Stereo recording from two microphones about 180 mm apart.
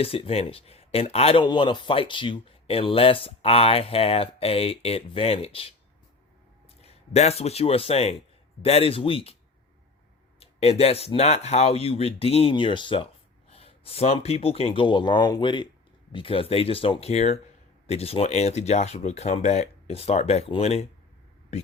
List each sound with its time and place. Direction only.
0.0 s speech: 30° left (ahead or behind)
6.8 s speech: 35° left (ahead or behind)
10.4 s speech: 35° left (ahead or behind)